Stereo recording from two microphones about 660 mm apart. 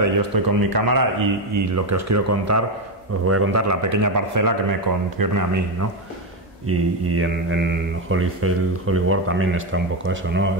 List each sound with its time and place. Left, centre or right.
0.0 s a man's voice: right